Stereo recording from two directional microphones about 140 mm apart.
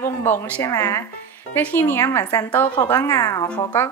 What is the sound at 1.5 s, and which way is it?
A woman's voice, 15° left (ahead or behind).